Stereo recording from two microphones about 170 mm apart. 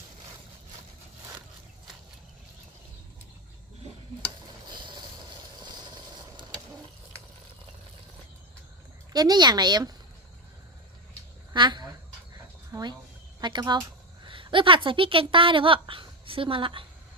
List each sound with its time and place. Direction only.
4.6 s vehicle: 25° right (ahead or behind)
9.1 s speech: 25° right (ahead or behind)
11.5 s a sound: 25° right (ahead or behind)
12.7 s a woman's voice: 25° right (ahead or behind)